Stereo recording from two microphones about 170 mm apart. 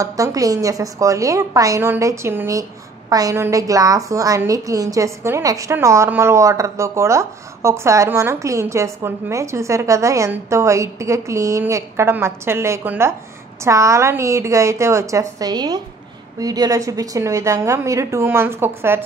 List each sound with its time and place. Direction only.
0.0 s a woman's voice: 20° right (ahead or behind)